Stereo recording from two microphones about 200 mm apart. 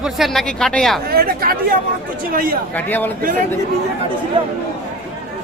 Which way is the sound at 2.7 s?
10° left (ahead or behind).